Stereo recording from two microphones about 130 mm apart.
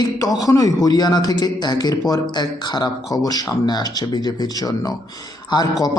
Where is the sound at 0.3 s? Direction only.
25° left (ahead or behind).